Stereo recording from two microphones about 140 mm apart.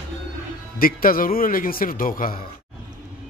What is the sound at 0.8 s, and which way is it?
A man's voice, 90° left.